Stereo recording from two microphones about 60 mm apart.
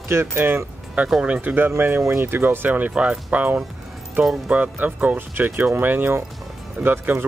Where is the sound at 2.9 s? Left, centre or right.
Centre.